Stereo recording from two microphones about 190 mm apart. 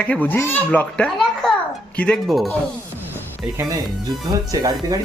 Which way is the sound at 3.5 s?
15° right (ahead or behind).